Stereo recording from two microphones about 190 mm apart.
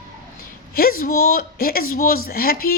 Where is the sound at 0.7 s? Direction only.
50° left (ahead or behind).